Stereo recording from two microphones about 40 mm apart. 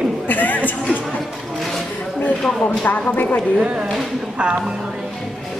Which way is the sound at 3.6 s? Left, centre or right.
Right.